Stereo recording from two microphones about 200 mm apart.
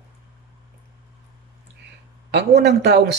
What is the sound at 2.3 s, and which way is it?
Speech, 55° right (ahead or behind).